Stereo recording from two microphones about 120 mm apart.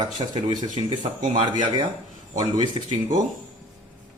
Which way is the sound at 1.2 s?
90° right.